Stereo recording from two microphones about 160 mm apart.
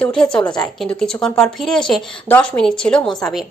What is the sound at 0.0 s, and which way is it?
A woman's voice, 5° left (ahead or behind).